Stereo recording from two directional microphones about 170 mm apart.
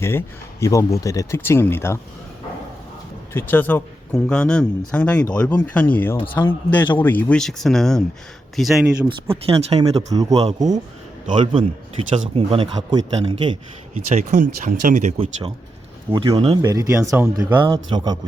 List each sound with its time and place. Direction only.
0.0 s speech: 15° left (ahead or behind)
3.3 s speech: 10° left (ahead or behind)
9.3 s speech: 35° right (ahead or behind)
10.1 s a man's voice: 20° right (ahead or behind)
14.1 s speech: 50° right (ahead or behind); by 16.6 s 30° right (ahead or behind)
16.6 s speech: 20° right (ahead or behind)
17.7 s a man's voice: 25° right (ahead or behind)